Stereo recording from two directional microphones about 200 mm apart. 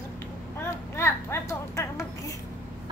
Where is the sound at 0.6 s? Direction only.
15° left (ahead or behind).